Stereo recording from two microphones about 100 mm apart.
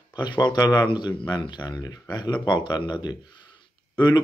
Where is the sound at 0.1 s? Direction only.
45° left (ahead or behind).